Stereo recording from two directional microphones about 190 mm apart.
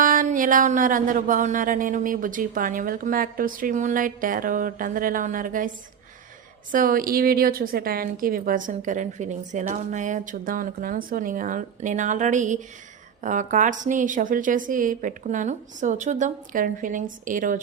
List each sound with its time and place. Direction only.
0.0 s music: 45° right (ahead or behind)
8.2 s a woman's voice: 50° right (ahead or behind)
13.2 s music: 40° right (ahead or behind)